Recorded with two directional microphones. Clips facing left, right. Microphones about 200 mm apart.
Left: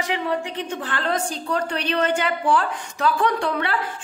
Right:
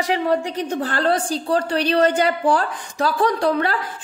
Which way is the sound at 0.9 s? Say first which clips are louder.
Right 4 dB; 35° right (ahead or behind).